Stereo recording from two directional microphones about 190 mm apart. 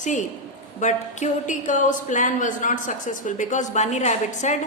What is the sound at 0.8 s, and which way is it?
A woman's voice, 40° left (ahead or behind).